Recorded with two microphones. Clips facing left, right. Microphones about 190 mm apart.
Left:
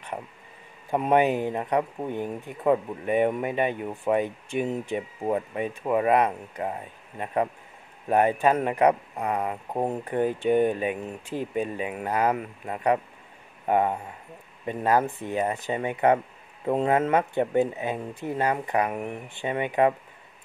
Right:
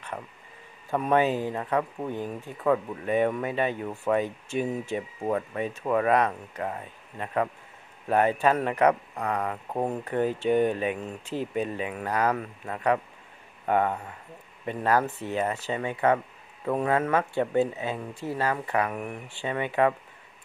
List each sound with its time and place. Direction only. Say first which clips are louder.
0.8 s speech: left 2 dB; 20° left (ahead or behind)